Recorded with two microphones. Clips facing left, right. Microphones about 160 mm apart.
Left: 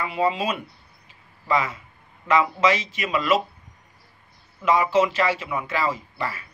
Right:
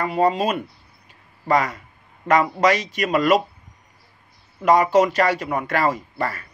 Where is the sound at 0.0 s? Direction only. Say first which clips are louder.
Right 4 dB; 45° right (ahead or behind).